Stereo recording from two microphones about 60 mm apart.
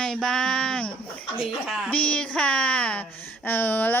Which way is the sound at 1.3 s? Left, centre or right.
Centre.